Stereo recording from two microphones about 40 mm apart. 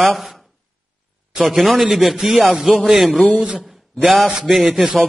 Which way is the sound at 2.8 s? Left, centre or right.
Centre.